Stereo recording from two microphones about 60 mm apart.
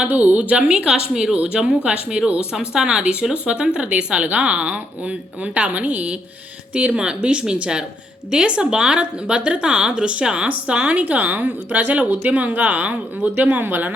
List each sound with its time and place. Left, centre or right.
0.0 s a woman's voice: right